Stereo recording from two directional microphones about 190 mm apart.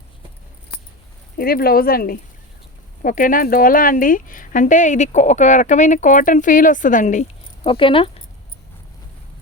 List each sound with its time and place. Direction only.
1.4 s speech: 50° left (ahead or behind)
7.6 s speech: 25° left (ahead or behind)